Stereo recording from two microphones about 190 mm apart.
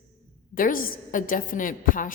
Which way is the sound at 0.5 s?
45° left (ahead or behind).